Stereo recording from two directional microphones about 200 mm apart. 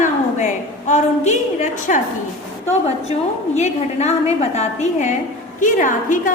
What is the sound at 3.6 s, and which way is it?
A woman's voice, 35° left (ahead or behind).